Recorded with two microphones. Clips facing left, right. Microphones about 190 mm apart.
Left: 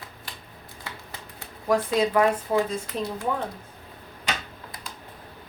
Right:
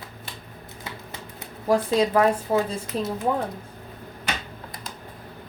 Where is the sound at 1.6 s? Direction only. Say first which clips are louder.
Right 2 dB; 30° right (ahead or behind).